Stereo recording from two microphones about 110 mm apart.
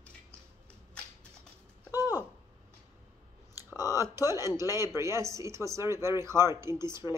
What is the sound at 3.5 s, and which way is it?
Clicking, 30° left (ahead or behind).